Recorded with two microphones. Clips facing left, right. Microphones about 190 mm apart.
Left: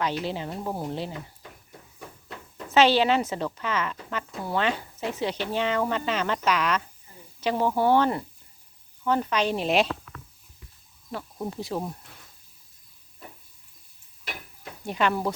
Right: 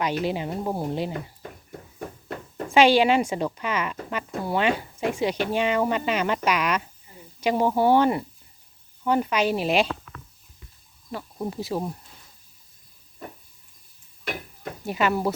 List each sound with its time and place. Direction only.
0.2 s speech: 15° right (ahead or behind)
1.4 s a sound: 50° right (ahead or behind)
2.6 s speech: 10° right (ahead or behind)
11.1 s speech: centre (ahead or behind)
14.8 s speech: 5° right (ahead or behind)